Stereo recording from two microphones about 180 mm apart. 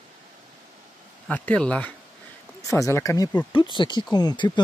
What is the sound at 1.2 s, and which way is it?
Speech, 10° left (ahead or behind).